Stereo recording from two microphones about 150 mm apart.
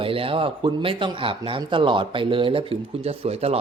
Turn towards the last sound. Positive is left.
turn(degrees=-45)  # may be behind; listen again after turning